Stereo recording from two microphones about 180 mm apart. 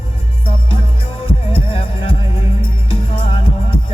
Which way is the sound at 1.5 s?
30° left (ahead or behind).